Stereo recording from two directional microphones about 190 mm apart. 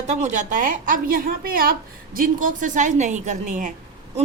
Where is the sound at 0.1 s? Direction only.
40° right (ahead or behind).